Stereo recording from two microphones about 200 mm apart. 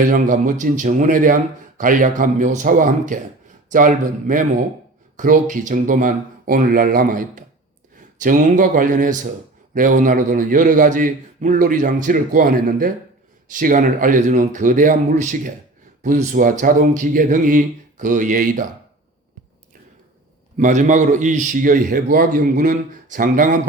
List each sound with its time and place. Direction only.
0.0 s a man's voice: 40° right (ahead or behind)
20.6 s a man's voice: 40° right (ahead or behind)